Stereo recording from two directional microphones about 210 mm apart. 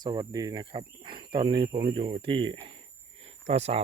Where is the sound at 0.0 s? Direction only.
20° right (ahead or behind).